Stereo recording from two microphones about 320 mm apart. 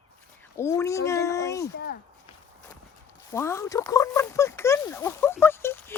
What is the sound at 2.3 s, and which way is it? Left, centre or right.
Walk, centre.